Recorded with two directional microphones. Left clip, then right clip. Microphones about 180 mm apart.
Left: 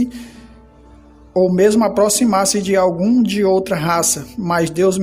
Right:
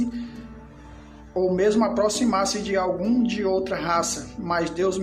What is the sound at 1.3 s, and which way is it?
Speech, 55° left (ahead or behind).